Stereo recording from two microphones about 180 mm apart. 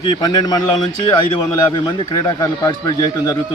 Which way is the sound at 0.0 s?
25° left (ahead or behind).